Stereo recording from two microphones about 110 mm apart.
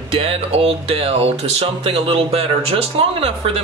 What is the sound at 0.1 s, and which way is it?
Speech, 60° right (ahead or behind).